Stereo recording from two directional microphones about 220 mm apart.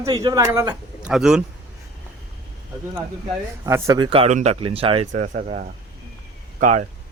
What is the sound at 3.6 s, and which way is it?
Speech, 15° right (ahead or behind).